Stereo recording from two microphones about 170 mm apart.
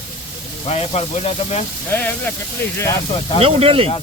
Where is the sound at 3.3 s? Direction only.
35° right (ahead or behind).